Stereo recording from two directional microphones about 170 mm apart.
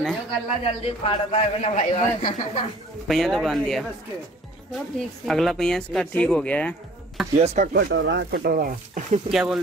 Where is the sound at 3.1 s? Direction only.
Centre (ahead or behind).